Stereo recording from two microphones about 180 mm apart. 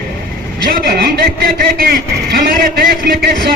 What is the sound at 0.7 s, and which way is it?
A man's voice, 55° right (ahead or behind).